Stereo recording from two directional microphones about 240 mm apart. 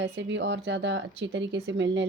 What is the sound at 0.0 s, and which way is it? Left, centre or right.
Speech, right.